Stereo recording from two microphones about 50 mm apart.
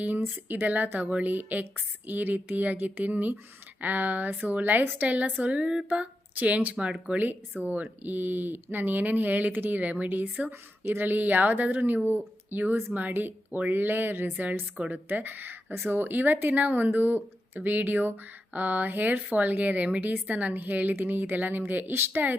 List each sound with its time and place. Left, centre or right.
0.0 s a woman's voice: right
6.3 s a woman's voice: right
14.8 s speech: right
15.1 s a woman's voice: right